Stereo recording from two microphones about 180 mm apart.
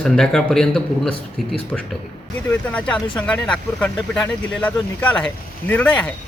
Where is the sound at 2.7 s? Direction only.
5° left (ahead or behind).